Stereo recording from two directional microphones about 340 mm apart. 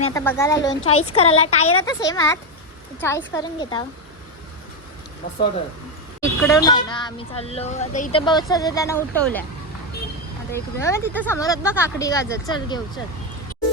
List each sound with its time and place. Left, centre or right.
0.0 s speech: centre
6.2 s speech: centre
10.5 s speech: centre